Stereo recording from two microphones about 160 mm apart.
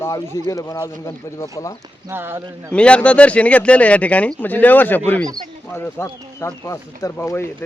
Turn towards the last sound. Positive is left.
turn(degrees=15)  # may be behind; listen again after turning